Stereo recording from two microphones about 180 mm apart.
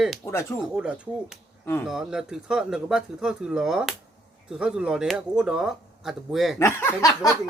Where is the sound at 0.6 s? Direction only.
5° right (ahead or behind).